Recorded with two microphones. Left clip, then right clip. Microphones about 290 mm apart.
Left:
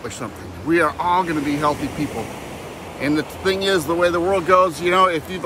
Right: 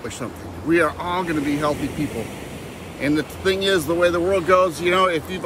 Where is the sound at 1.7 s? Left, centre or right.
Centre.